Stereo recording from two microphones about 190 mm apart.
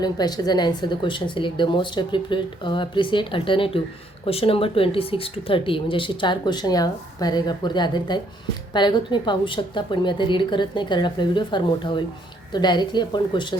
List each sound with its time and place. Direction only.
0.0 s speech: 20° left (ahead or behind)